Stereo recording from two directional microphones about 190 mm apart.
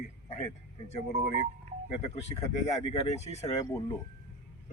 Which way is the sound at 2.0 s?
35° left (ahead or behind).